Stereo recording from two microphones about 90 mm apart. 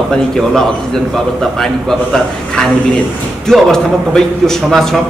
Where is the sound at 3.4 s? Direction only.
5° left (ahead or behind).